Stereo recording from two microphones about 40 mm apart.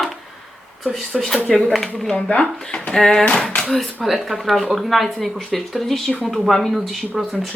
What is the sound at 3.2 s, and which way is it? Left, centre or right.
Speech, left.